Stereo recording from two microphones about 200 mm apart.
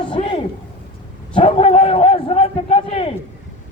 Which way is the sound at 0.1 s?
25° left (ahead or behind).